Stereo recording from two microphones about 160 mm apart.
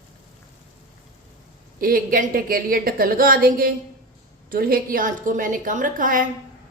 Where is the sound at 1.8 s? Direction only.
65° right (ahead or behind).